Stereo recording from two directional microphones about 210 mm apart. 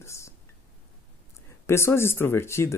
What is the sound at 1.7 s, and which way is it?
Speech, 10° left (ahead or behind).